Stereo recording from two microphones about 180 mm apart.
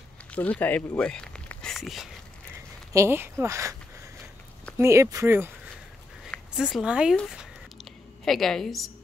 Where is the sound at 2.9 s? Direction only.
15° right (ahead or behind).